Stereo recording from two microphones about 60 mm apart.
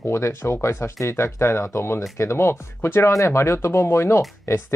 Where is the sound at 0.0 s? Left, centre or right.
Left.